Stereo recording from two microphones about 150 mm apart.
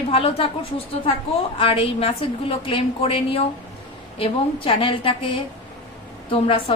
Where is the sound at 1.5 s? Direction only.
35° left (ahead or behind).